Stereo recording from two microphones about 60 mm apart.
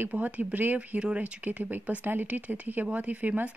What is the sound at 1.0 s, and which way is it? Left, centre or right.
Speech, centre.